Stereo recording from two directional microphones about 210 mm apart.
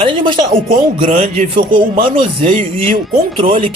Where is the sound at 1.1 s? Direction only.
35° right (ahead or behind).